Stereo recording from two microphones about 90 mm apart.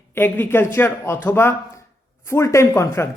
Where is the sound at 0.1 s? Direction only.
25° left (ahead or behind).